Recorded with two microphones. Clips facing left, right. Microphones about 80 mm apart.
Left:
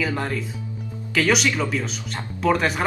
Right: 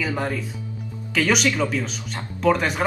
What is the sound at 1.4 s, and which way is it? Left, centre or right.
Speech, left.